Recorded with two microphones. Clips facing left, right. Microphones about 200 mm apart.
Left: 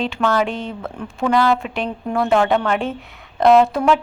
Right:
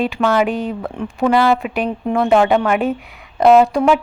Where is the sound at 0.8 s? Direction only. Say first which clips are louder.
Right 3 dB; 15° right (ahead or behind).